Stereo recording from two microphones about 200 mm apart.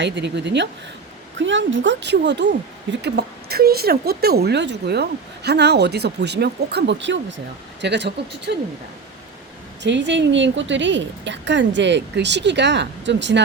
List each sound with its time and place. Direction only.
0.0 s speech: 60° right (ahead or behind)
9.8 s speech: 65° right (ahead or behind)